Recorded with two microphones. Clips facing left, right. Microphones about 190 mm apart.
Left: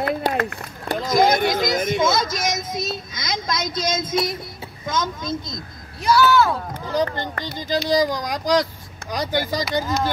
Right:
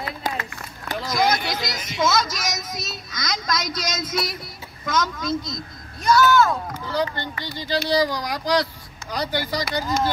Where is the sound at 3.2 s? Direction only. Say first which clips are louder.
Right 1 dB; 25° left (ahead or behind).